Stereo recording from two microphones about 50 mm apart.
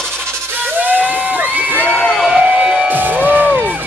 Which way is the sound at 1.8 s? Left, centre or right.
Centre.